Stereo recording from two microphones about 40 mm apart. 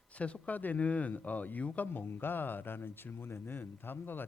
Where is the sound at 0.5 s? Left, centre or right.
Left.